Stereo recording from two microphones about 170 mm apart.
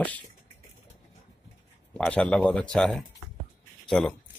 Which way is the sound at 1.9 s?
5° left (ahead or behind).